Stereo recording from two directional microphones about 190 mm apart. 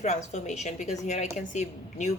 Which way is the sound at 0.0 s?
35° left (ahead or behind).